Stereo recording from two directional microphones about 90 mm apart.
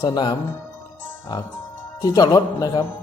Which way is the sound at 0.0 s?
50° left (ahead or behind).